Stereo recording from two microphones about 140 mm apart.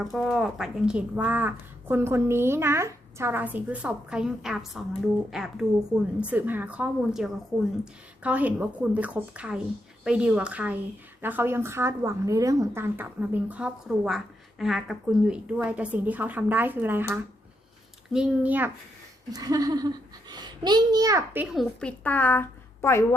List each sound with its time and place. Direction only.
0.0 s a woman's voice: centre (ahead or behind)
19.3 s a sound: 25° right (ahead or behind)
20.3 s a child's voice: 30° right (ahead or behind)
21.3 s a woman's voice: 5° right (ahead or behind); by 23.0 s 20° left (ahead or behind)